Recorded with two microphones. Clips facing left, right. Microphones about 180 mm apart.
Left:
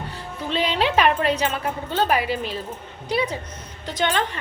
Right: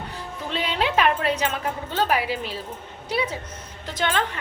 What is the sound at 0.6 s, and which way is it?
A woman's voice, 5° right (ahead or behind).